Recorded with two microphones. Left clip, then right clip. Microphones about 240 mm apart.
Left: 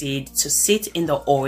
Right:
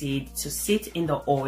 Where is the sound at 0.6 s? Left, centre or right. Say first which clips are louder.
Left 4 dB; left.